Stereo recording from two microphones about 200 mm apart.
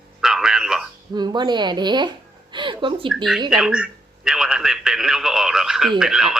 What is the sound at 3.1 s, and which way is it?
Speech, centre (ahead or behind).